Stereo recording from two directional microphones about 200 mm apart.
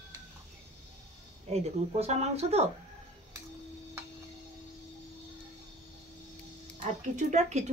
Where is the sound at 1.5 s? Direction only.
30° right (ahead or behind).